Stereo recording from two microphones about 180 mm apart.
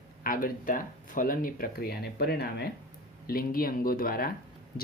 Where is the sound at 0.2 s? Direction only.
50° left (ahead or behind).